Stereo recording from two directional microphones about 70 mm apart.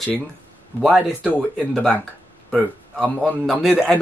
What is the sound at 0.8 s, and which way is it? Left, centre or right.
Speech, centre.